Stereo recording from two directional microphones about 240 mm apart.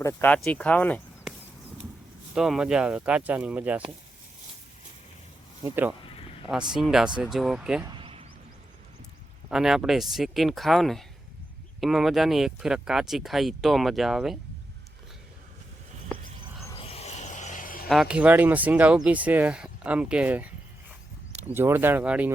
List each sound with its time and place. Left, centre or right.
0.0 s speech: centre
2.3 s speech: centre
5.6 s speech: centre
6.1 s a sound: left
6.5 s speech: centre
7.9 s a sound: right
9.5 s speech: centre
16.6 s a sound: left
17.8 s speech: centre
21.5 s speech: centre